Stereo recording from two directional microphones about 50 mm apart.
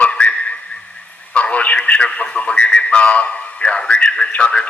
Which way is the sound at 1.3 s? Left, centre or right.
Left.